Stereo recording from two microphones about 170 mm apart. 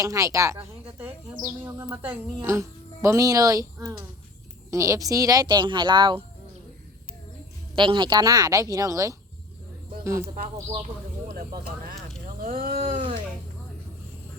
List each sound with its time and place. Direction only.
0.0 s speech: 20° right (ahead or behind)
7.8 s speech: 30° right (ahead or behind)
10.3 s speech: 35° right (ahead or behind)
12.4 s speech: 50° right (ahead or behind)